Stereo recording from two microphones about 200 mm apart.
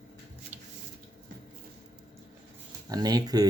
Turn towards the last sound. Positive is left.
turn(degrees=-20)  # may be behind; listen again after turning